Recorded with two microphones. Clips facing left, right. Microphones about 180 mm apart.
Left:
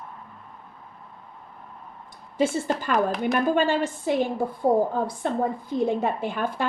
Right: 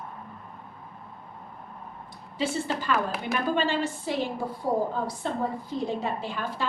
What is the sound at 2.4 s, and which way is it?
A woman's voice, 50° left (ahead or behind).